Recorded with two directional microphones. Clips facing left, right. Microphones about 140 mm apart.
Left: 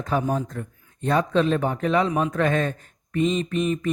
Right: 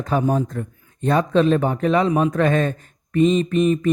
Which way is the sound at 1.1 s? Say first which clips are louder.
Right 4 dB; 45° right (ahead or behind).